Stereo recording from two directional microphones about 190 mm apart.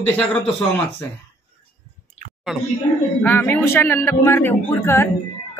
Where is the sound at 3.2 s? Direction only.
10° left (ahead or behind).